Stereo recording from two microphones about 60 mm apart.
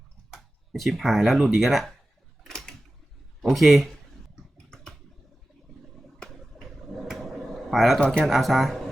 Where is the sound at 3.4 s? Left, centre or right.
Centre.